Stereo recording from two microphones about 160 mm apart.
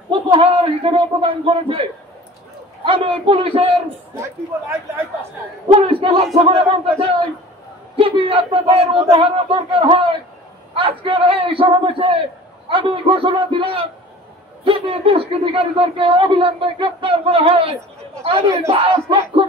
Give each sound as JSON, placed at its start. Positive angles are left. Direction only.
{"t": 0.1, "sound": "a man's voice", "side_deg": -35}
{"t": 5.7, "sound": "a man's voice", "side_deg": -35}